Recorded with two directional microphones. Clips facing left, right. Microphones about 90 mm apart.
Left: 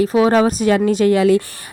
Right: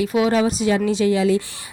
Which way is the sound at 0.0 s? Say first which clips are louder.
Left 5 dB; 35° left (ahead or behind).